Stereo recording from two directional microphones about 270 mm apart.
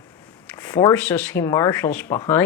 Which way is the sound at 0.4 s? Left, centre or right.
Centre.